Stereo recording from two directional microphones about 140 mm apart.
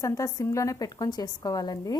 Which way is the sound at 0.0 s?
20° left (ahead or behind).